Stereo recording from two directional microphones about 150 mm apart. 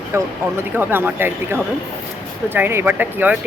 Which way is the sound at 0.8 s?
15° right (ahead or behind).